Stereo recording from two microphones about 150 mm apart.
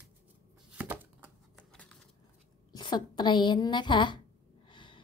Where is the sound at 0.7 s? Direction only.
10° right (ahead or behind).